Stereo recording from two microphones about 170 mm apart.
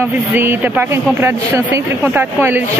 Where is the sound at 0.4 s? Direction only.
15° right (ahead or behind).